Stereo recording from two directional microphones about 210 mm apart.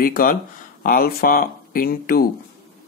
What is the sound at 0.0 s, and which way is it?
Speech, 40° left (ahead or behind).